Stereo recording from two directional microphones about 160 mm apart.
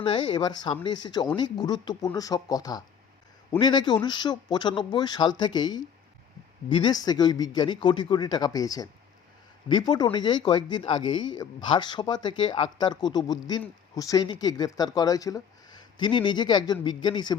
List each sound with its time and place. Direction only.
0.0 s speech: 30° left (ahead or behind)